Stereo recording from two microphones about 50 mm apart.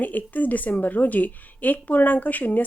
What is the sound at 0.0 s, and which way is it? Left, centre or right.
A woman's voice, left.